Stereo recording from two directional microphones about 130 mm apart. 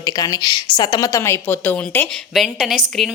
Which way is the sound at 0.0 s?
30° left (ahead or behind).